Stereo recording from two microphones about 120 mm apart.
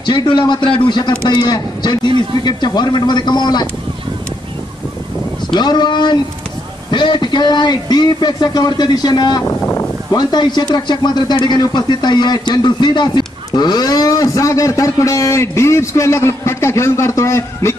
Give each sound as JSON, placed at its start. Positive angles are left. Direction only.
{"t": 0.0, "sound": "speech", "side_deg": 40}
{"t": 5.5, "sound": "speech", "side_deg": 35}